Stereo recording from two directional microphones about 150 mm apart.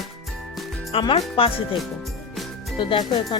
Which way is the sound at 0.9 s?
40° left (ahead or behind).